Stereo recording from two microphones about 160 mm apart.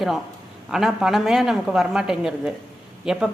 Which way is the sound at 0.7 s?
5° right (ahead or behind).